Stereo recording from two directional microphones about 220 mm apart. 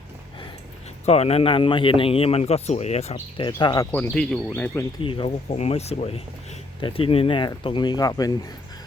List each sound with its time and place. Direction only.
1.0 s a man's voice: 30° left (ahead or behind)
3.9 s speech: 5° left (ahead or behind)
5.0 s a man's voice: 25° left (ahead or behind)